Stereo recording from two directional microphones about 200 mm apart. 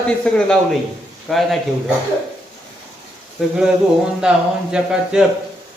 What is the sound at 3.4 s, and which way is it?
A man's voice, centre (ahead or behind).